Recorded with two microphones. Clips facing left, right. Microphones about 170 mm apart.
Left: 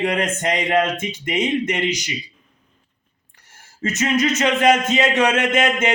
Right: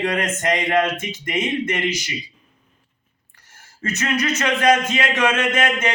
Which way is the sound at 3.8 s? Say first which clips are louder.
Left 3 dB; 20° left (ahead or behind).